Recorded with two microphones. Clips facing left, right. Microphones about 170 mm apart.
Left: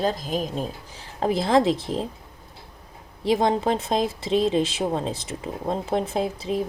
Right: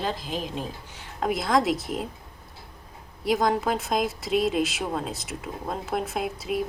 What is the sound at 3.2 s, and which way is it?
Speech, 25° left (ahead or behind).